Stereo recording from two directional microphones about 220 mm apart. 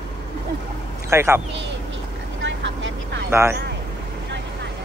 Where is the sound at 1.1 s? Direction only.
10° right (ahead or behind).